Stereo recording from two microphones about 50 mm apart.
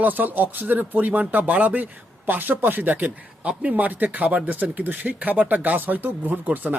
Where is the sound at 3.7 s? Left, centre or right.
Right.